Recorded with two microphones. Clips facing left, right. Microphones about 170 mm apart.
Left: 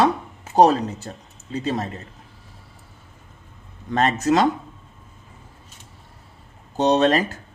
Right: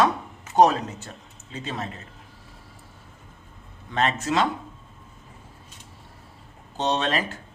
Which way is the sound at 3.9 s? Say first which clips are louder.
Left 5 dB; 40° left (ahead or behind).